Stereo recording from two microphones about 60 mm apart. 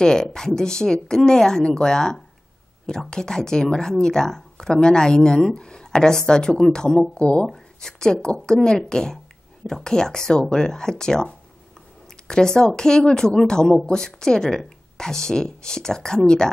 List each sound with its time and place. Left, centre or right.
0.0 s speech: centre
7.4 s speech: centre